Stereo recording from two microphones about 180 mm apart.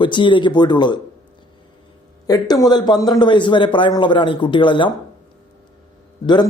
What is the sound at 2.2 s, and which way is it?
A man's voice, 20° left (ahead or behind).